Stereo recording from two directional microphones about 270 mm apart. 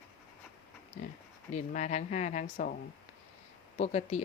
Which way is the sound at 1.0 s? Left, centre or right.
Left.